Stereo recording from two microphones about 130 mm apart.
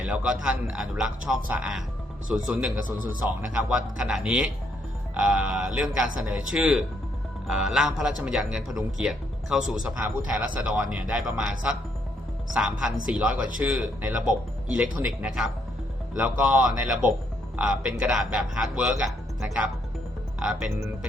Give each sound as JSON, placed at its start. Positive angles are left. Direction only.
{"t": 0.0, "sound": "a man's voice", "side_deg": -10}
{"t": 20.7, "sound": "speech", "side_deg": -20}